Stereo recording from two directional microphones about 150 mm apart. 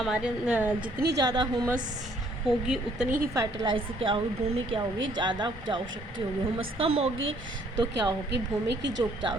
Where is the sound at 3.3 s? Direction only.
30° right (ahead or behind).